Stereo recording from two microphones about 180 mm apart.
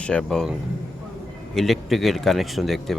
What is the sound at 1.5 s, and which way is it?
Speech, centre (ahead or behind).